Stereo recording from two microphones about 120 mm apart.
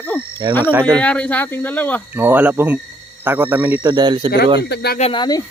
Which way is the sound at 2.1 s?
15° right (ahead or behind).